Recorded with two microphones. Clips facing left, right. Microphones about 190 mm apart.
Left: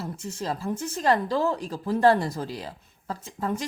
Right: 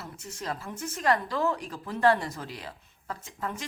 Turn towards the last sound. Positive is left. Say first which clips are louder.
# left 6 dB
turn(degrees=30)  # may be behind; listen again after turning